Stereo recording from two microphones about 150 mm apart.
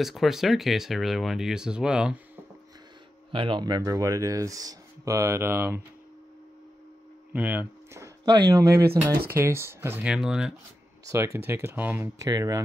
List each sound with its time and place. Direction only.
0.0 s speech: centre (ahead or behind)
3.3 s speech: 35° right (ahead or behind); by 5.8 s 15° right (ahead or behind)
7.3 s speech: 10° right (ahead or behind)
11.1 s speech: 20° right (ahead or behind)
12.2 s speech: 25° right (ahead or behind)